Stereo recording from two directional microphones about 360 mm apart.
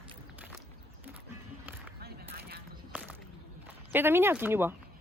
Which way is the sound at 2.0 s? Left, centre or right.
Right.